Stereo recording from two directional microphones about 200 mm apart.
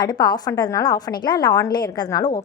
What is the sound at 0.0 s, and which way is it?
A woman's voice, 20° left (ahead or behind).